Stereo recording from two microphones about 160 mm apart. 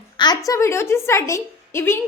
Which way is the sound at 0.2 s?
25° left (ahead or behind).